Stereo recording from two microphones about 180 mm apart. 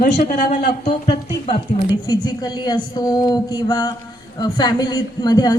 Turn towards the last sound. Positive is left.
turn(degrees=20)  # may be behind; listen again after turning